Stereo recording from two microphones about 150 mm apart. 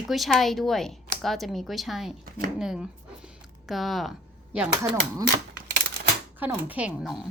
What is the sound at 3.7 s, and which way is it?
A woman's voice, centre (ahead or behind).